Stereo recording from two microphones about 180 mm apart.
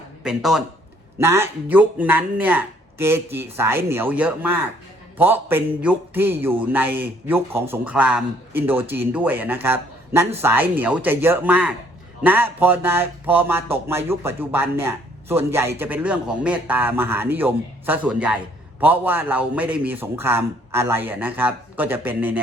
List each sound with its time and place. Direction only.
0.2 s speech: 5° right (ahead or behind)
1.2 s speech: 15° right (ahead or behind)